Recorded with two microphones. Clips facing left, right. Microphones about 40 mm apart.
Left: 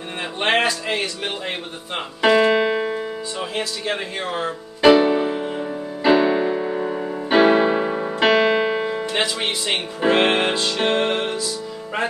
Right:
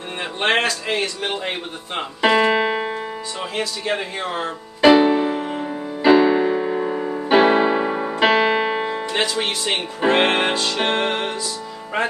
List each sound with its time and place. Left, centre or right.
0.4 s speech: centre
2.2 s music: centre
3.3 s speech: centre
4.2 s music: centre
6.1 s music: centre
9.7 s speech: centre
10.8 s music: centre
11.1 s music: centre